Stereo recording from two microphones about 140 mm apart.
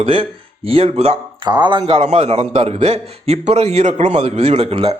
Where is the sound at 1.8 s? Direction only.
45° right (ahead or behind).